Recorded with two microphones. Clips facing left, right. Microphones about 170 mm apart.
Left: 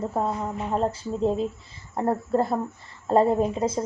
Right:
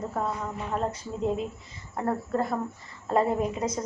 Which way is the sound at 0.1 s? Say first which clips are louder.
Left 4 dB; 30° left (ahead or behind).